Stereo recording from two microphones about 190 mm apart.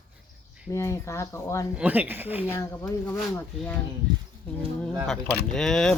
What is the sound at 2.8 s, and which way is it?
Speech, 5° left (ahead or behind).